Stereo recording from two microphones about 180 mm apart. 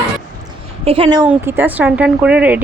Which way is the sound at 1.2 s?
10° right (ahead or behind).